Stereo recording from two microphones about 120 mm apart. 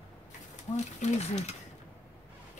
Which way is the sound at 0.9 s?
70° left (ahead or behind).